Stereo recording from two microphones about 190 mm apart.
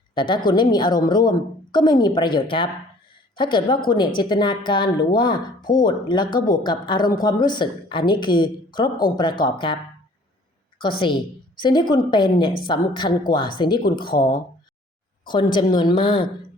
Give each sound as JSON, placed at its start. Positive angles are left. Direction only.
{"t": 0.1, "sound": "a woman's voice", "side_deg": 25}
{"t": 10.8, "sound": "a woman's voice", "side_deg": 25}
{"t": 15.5, "sound": "a woman's voice", "side_deg": 25}